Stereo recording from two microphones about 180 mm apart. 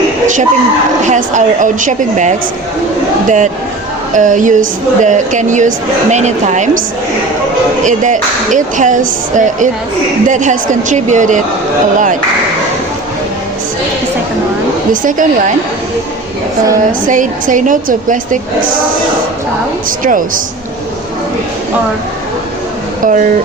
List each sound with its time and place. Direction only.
1.0 s a woman's voice: 45° right (ahead or behind)
7.9 s a woman's voice: 45° right (ahead or behind)
17.1 s a woman's voice: 45° right (ahead or behind)
20.1 s a woman's voice: 50° right (ahead or behind)
23.0 s a woman's voice: 45° right (ahead or behind)